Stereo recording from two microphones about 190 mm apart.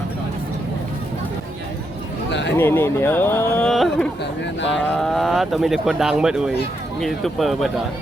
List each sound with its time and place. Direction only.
2.6 s speech: 10° left (ahead or behind)
4.2 s speech: 70° left (ahead or behind)
4.9 s speech: centre (ahead or behind)